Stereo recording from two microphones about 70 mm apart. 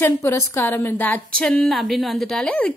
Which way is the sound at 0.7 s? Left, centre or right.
Left.